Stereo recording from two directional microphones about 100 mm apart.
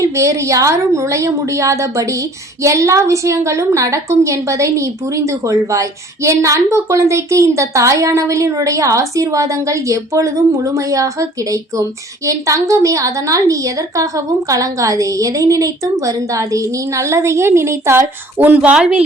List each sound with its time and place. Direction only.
0.0 s a woman's voice: 30° right (ahead or behind); by 19.0 s 10° right (ahead or behind)